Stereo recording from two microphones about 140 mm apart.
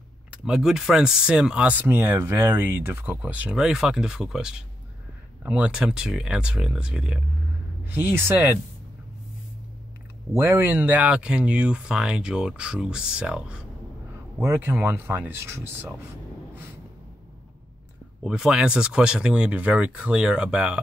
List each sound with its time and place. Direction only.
0.3 s speech: 5° right (ahead or behind)
10.3 s speech: 15° right (ahead or behind)
14.4 s speech: 20° right (ahead or behind)
18.2 s speech: 5° right (ahead or behind)